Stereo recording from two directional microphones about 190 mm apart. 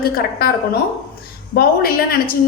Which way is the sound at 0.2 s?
55° left (ahead or behind).